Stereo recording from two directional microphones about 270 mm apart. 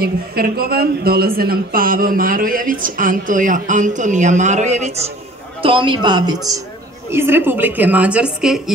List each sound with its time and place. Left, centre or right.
0.0 s a man's voice: right; by 8.7 s centre